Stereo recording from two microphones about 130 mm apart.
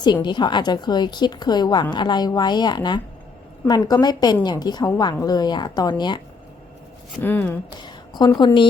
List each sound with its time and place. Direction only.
0.0 s a woman's voice: 35° left (ahead or behind)
7.2 s speech: 15° left (ahead or behind)
7.8 s a sound: 35° left (ahead or behind)